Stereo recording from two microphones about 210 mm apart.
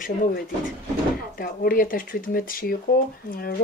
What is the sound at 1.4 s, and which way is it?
Speech, 40° left (ahead or behind).